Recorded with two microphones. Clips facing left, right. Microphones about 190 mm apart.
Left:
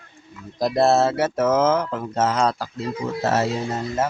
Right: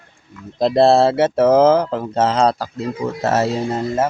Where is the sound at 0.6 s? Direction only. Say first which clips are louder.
Right 5 dB; 30° right (ahead or behind).